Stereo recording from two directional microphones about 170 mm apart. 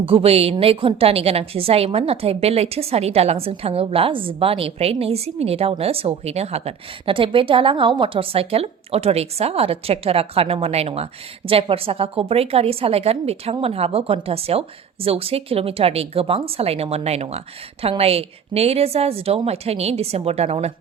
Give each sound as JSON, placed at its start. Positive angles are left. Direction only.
{"t": 0.0, "sound": "a woman's voice", "side_deg": -35}